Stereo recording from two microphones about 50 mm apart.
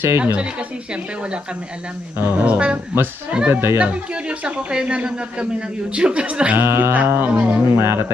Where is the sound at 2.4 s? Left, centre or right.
Right.